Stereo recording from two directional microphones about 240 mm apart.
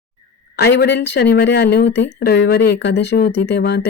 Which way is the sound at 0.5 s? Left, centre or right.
Left.